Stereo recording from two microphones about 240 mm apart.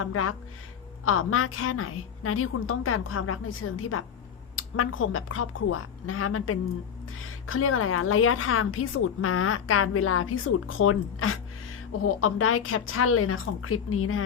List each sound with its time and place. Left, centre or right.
0.0 s a woman's voice: left